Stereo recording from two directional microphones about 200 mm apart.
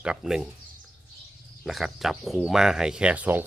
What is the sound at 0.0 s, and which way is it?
Speech, 5° right (ahead or behind).